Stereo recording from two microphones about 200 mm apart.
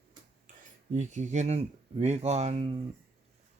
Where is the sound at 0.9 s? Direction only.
35° right (ahead or behind).